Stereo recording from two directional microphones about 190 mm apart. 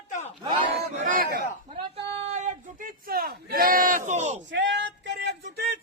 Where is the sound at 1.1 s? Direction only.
45° right (ahead or behind).